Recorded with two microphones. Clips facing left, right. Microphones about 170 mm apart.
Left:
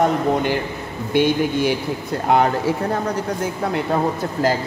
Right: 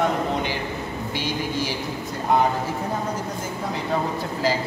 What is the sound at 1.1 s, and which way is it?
Speech, 60° left (ahead or behind).